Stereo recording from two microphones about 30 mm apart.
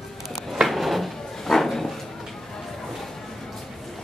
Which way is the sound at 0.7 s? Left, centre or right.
Centre.